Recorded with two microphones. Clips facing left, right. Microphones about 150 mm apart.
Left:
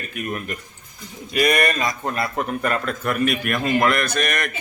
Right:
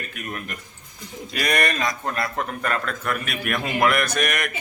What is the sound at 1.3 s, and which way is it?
A man's voice, 5° left (ahead or behind).